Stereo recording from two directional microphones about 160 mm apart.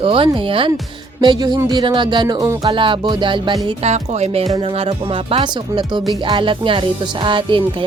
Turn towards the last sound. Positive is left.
turn(degrees=-30)  # may be behind; listen again after turning